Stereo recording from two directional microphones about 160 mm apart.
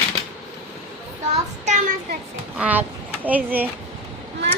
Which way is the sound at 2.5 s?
10° right (ahead or behind).